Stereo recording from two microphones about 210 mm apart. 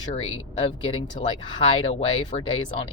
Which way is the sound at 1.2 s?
30° left (ahead or behind).